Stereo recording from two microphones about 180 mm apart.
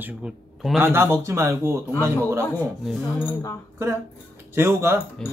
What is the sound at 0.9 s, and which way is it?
Speech, 15° right (ahead or behind).